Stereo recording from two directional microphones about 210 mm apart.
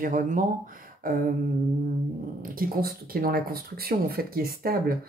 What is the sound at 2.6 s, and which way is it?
Speech, 45° right (ahead or behind).